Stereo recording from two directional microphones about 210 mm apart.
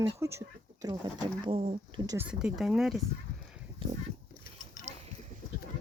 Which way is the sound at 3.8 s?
25° right (ahead or behind).